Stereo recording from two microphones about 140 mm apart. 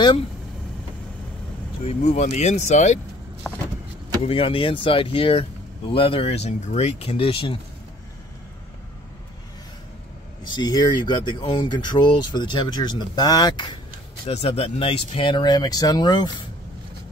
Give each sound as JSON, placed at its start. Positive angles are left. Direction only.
{"t": 1.9, "sound": "speech", "side_deg": 55}
{"t": 3.4, "sound": "walk", "side_deg": 10}
{"t": 4.2, "sound": "speech", "side_deg": 45}
{"t": 10.5, "sound": "speech", "side_deg": 30}
{"t": 14.2, "sound": "speech", "side_deg": 45}